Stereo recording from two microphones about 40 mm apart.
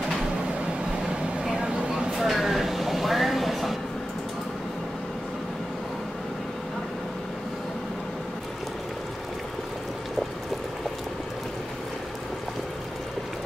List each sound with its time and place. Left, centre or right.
1.0 s vehicle: centre
2.1 s train: centre